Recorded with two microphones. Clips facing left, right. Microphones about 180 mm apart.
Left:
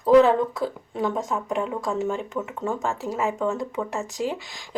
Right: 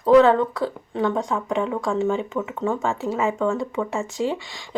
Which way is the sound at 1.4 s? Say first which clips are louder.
Right 3 dB; 90° right.